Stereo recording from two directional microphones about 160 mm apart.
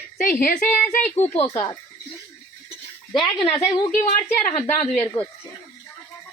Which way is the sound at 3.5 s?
40° left (ahead or behind).